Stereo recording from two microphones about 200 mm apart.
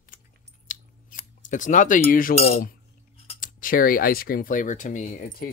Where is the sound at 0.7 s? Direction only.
40° left (ahead or behind).